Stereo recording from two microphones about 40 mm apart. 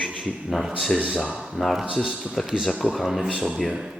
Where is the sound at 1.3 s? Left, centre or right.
Centre.